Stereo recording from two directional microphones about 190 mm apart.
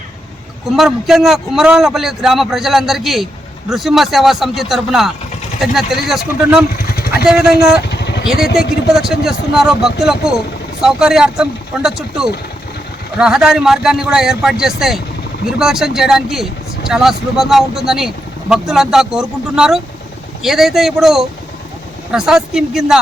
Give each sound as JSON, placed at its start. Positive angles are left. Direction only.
{"t": 0.8, "sound": "speech", "side_deg": 0}
{"t": 6.8, "sound": "vehicle", "side_deg": 55}
{"t": 7.3, "sound": "speech", "side_deg": -5}
{"t": 7.8, "sound": "vehicle", "side_deg": 65}
{"t": 8.5, "sound": "speech", "side_deg": -5}